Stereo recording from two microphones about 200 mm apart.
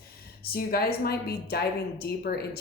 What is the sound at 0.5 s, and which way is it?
A woman's voice, 50° left (ahead or behind).